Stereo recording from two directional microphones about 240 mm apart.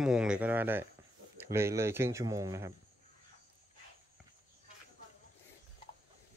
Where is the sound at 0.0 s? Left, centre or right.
Centre.